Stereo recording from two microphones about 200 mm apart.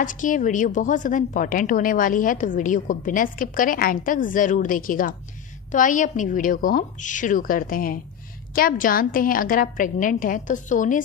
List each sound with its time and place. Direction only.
0.0 s a woman's voice: 40° left (ahead or behind)